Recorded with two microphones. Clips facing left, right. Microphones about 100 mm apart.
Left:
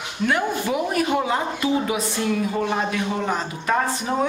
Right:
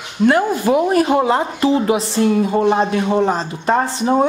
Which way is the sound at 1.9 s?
30° right (ahead or behind).